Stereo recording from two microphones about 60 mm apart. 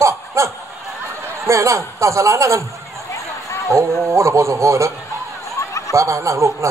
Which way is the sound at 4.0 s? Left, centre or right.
Right.